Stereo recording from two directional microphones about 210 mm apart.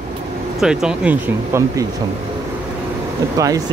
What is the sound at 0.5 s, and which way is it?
Speech, centre (ahead or behind).